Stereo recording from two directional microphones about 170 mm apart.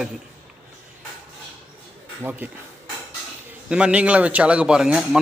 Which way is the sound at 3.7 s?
5° right (ahead or behind).